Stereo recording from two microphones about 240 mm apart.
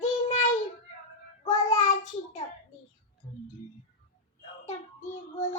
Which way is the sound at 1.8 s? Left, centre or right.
Left.